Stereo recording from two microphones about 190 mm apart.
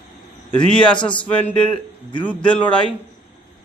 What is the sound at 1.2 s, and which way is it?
A man's voice, 10° left (ahead or behind).